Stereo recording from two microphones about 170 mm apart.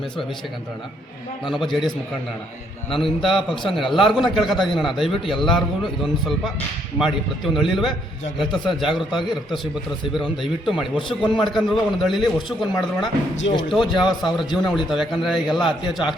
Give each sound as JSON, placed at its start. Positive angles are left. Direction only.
{"t": 1.5, "sound": "a man's voice", "side_deg": 0}
{"t": 2.9, "sound": "a man's voice", "side_deg": 0}
{"t": 7.0, "sound": "a man's voice", "side_deg": 0}